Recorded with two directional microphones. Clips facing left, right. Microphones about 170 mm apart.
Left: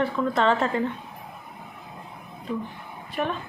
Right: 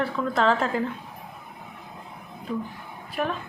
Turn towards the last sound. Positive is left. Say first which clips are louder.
# even
turn(degrees=0)  # may be behind; listen again after turning